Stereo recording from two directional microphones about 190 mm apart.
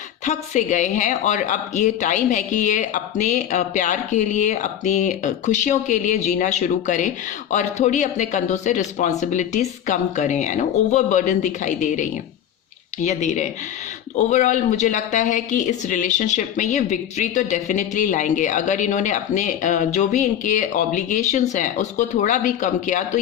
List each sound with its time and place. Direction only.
0.3 s speech: 40° left (ahead or behind)